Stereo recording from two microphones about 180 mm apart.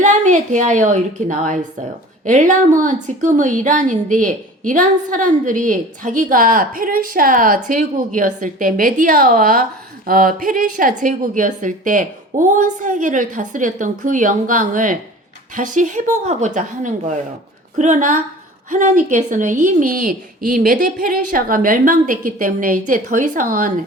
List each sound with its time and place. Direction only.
0.0 s a woman's voice: 45° right (ahead or behind)